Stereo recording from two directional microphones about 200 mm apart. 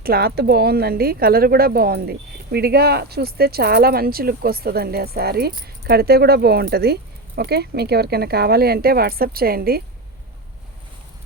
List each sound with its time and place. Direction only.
0.0 s speech: 50° right (ahead or behind)